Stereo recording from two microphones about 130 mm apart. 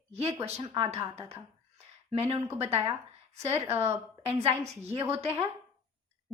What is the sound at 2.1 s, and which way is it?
Speech, 50° right (ahead or behind).